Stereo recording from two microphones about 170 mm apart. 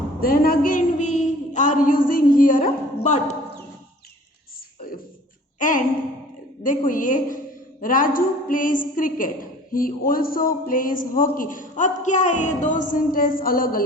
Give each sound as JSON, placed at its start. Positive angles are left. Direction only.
{"t": 0.2, "sound": "a woman's voice", "side_deg": 60}
{"t": 5.5, "sound": "a sound", "side_deg": 50}
{"t": 6.6, "sound": "a woman's voice", "side_deg": 55}